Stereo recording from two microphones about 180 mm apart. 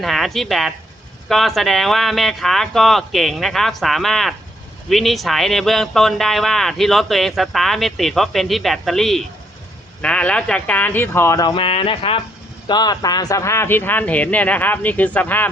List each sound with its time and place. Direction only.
0.0 s speech: centre (ahead or behind)